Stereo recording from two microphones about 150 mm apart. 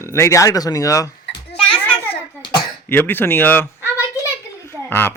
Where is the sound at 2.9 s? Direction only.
15° left (ahead or behind).